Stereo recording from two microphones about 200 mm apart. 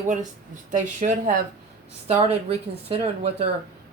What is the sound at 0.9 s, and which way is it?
Speech, 40° right (ahead or behind).